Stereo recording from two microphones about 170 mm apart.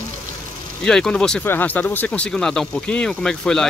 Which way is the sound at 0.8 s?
5° left (ahead or behind).